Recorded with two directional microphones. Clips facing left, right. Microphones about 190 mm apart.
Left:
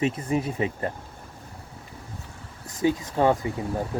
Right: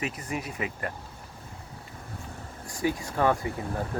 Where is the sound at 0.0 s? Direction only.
30° left (ahead or behind).